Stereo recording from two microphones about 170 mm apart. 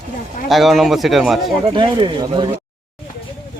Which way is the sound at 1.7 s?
30° right (ahead or behind).